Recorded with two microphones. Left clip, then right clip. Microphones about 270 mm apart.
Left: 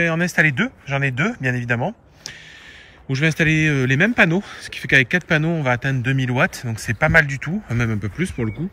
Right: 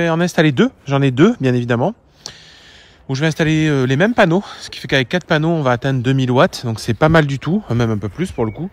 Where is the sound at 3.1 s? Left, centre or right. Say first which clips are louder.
Right 1 dB; centre.